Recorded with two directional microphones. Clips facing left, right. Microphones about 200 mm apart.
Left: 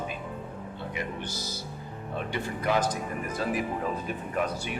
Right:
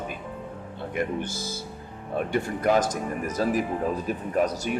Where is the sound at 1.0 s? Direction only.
50° right (ahead or behind).